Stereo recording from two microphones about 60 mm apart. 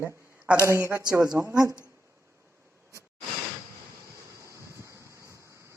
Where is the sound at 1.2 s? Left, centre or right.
Right.